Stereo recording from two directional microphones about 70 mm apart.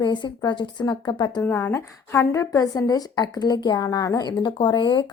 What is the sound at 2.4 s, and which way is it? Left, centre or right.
A woman's voice, left.